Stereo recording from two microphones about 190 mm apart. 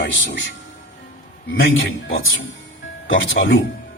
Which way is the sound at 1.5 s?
90° left.